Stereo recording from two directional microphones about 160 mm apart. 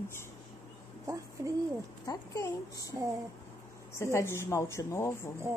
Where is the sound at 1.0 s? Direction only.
20° right (ahead or behind).